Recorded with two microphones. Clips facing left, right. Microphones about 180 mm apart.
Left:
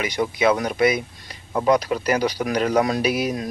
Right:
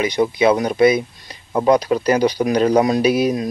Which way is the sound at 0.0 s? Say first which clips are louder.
Right 5 dB; 25° right (ahead or behind).